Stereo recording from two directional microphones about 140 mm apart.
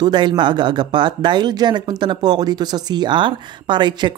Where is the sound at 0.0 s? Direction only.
35° right (ahead or behind).